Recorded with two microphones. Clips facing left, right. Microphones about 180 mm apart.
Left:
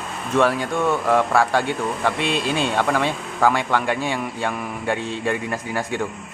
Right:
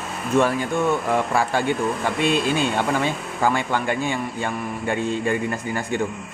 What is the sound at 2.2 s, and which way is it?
Speech, 50° right (ahead or behind).